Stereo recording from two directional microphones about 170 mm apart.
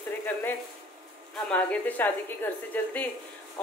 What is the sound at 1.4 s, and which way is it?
A woman's voice, 5° left (ahead or behind).